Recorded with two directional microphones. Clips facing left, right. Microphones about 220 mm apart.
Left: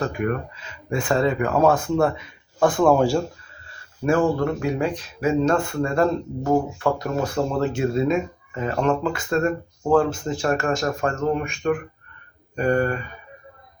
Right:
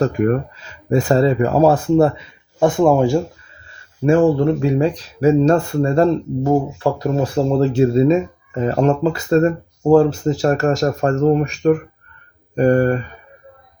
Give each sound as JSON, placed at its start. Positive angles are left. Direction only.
{"t": 0.0, "sound": "speech", "side_deg": -40}